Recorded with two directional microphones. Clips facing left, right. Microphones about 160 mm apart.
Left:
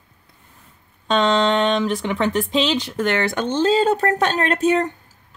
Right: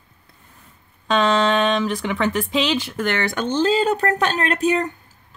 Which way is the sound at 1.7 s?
Centre (ahead or behind).